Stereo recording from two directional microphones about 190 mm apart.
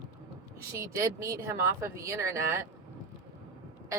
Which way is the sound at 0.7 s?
15° right (ahead or behind).